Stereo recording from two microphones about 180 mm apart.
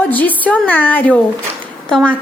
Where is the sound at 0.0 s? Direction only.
10° left (ahead or behind).